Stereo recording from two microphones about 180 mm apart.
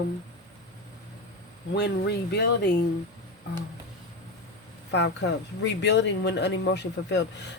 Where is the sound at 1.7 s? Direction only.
65° left (ahead or behind).